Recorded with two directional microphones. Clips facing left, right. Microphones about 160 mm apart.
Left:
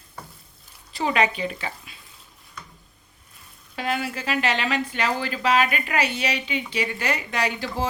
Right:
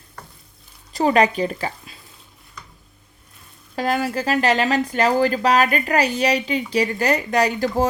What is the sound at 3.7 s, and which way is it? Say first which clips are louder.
Speech: right 6 dB; 40° right (ahead or behind).